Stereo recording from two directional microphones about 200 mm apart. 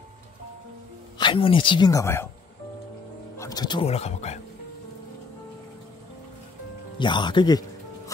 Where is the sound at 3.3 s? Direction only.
15° left (ahead or behind); by 4.4 s 35° left (ahead or behind).